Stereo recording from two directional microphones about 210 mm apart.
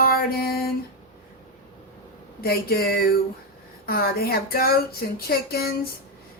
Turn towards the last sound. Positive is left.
turn(degrees=45)  # may be behind; listen again after turning